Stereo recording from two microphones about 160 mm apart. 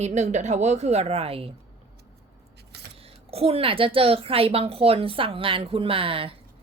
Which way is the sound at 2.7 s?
90° right.